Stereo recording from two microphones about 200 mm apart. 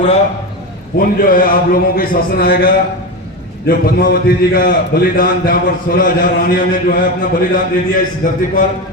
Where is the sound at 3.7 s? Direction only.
45° left (ahead or behind).